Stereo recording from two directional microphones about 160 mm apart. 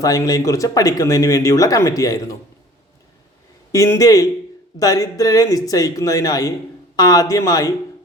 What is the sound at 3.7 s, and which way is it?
A man's voice, 20° left (ahead or behind).